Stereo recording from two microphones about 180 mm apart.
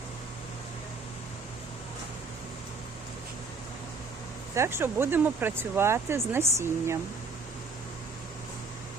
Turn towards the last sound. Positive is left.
turn(degrees=-15)  # may be behind; listen again after turning